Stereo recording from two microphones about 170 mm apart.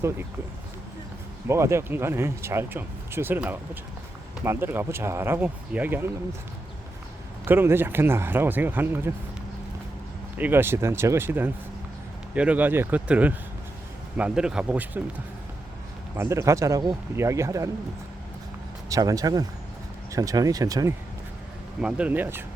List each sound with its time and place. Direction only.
1.5 s speech: 15° right (ahead or behind)
7.4 s speech: 15° right (ahead or behind)
10.3 s speech: 10° right (ahead or behind)
16.1 s speech: 15° right (ahead or behind)
18.9 s speech: 20° right (ahead or behind)
21.8 s speech: 5° right (ahead or behind)